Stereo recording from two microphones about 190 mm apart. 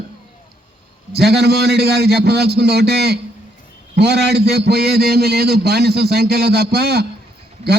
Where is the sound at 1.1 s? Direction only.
60° right (ahead or behind).